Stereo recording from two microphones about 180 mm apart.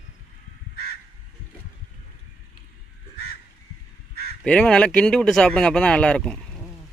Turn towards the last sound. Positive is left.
turn(degrees=5)  # may be behind; listen again after turning